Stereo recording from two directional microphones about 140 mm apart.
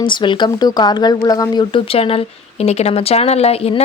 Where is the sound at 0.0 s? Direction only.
35° left (ahead or behind).